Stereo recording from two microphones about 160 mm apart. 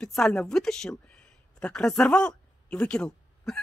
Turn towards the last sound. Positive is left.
turn(degrees=5)  # may be behind; listen again after turning